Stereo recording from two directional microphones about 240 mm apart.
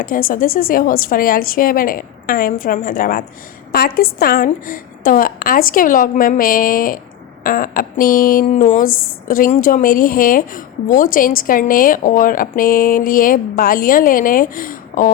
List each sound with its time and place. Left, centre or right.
0.0 s a woman's voice: left